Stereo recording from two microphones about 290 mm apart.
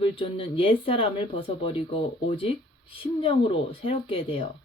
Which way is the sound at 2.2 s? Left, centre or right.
Centre.